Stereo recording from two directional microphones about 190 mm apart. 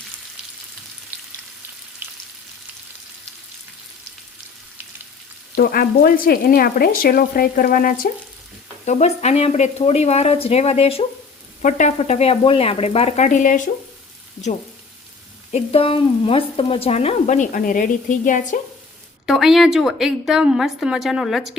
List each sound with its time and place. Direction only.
2.0 s frying: 10° right (ahead or behind)
5.5 s frying: 50° left (ahead or behind)
8.8 s a woman's voice: 35° left (ahead or behind)
15.5 s a woman's voice: 30° left (ahead or behind)
19.2 s a woman's voice: centre (ahead or behind)